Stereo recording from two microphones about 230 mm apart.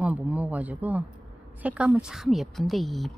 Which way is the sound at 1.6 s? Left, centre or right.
Centre.